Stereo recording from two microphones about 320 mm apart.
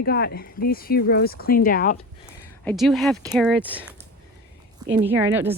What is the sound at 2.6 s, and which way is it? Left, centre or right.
Speech, centre.